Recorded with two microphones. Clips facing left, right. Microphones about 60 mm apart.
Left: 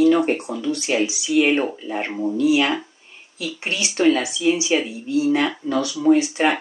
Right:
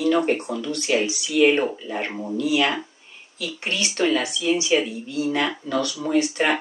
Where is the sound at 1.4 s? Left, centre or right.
Centre.